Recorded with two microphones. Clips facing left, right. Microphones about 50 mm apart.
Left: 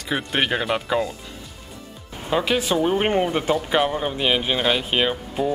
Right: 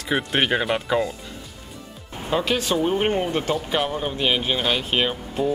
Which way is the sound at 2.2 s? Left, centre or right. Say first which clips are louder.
Left 1 dB; centre.